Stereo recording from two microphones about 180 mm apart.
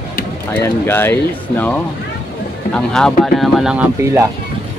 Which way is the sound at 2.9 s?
5° left (ahead or behind).